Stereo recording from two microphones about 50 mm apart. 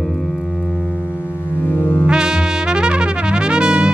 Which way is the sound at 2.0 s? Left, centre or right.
Centre.